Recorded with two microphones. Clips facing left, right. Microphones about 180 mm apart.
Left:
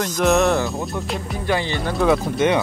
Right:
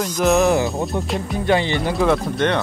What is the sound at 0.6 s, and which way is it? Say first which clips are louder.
Speech: right 3 dB; 15° right (ahead or behind).